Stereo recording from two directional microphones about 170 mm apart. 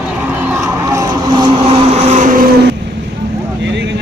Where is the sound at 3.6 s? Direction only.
90° right.